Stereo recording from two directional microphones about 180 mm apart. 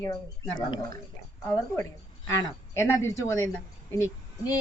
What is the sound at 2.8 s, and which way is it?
Speech, 15° left (ahead or behind).